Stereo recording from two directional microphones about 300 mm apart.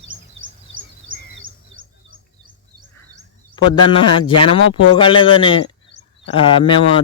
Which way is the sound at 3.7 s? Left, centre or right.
Centre.